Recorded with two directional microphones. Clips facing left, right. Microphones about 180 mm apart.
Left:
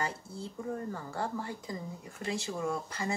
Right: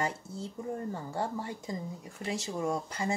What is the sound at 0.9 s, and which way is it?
Speech, 20° right (ahead or behind).